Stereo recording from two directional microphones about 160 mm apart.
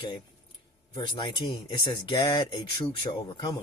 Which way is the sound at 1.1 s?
30° left (ahead or behind).